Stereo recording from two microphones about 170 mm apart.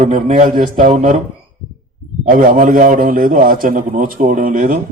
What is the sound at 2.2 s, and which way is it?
A man's voice, 50° right (ahead or behind).